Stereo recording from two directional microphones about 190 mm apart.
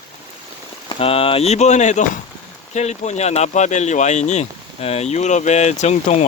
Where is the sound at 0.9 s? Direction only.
30° left (ahead or behind).